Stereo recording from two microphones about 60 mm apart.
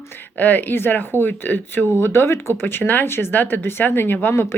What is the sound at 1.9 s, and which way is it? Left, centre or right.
Speech, left.